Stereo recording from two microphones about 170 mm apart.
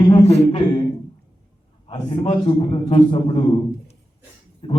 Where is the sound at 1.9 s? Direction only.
25° left (ahead or behind).